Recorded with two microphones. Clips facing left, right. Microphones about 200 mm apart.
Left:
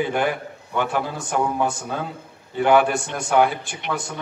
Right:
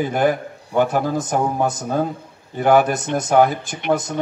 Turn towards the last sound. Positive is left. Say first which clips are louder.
# right 8 dB
turn(degrees=-40)  # may be behind; listen again after turning